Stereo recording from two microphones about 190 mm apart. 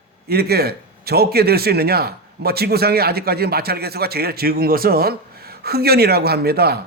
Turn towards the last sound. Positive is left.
turn(degrees=-55)  # may be behind; listen again after turning